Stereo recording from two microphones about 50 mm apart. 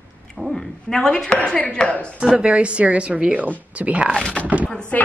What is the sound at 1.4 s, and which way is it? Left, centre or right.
Speech, left.